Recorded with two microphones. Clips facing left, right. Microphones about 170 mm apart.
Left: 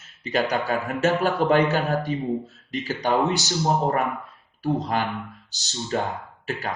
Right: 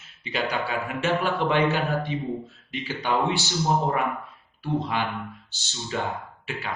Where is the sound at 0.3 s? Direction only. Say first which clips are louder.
Left 4 dB; 40° left (ahead or behind).